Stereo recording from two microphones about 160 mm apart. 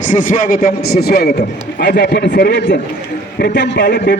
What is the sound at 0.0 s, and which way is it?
A man's voice, 55° left (ahead or behind).